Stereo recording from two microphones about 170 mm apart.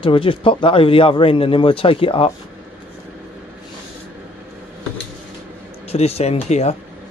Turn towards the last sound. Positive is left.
turn(degrees=40)  # may be behind; listen again after turning